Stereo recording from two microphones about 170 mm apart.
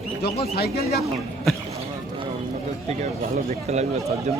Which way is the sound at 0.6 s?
65° left (ahead or behind).